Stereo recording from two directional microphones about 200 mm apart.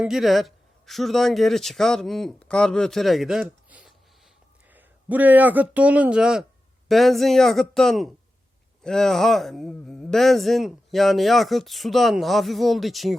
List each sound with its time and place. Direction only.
0.0 s speech: centre (ahead or behind)